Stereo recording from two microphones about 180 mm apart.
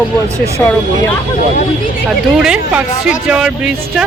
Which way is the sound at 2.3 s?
5° right (ahead or behind).